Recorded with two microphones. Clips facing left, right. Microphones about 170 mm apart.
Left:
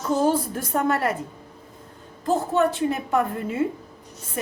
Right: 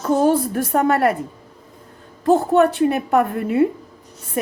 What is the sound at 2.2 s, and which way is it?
A woman's voice, 65° right (ahead or behind).